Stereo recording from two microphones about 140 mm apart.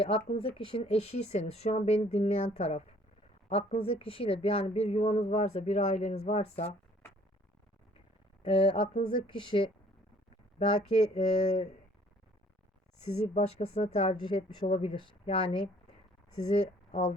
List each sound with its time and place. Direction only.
0.0 s a woman's voice: 45° left (ahead or behind)
8.4 s speech: 40° left (ahead or behind)
10.7 s a woman's voice: 45° left (ahead or behind)
13.1 s a woman's voice: 50° left (ahead or behind)
14.2 s speech: 35° left (ahead or behind)
16.5 s speech: 55° left (ahead or behind)